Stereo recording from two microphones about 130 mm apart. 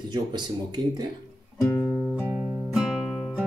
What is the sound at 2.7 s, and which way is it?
Music, 5° right (ahead or behind).